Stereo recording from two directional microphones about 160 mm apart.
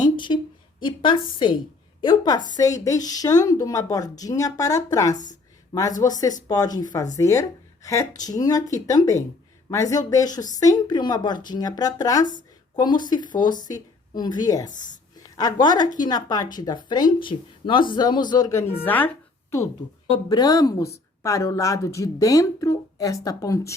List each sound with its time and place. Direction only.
0.0 s a sound: 30° left (ahead or behind)
0.8 s a woman's voice: 30° left (ahead or behind); by 19.6 s 15° left (ahead or behind)
20.1 s speech: 25° left (ahead or behind)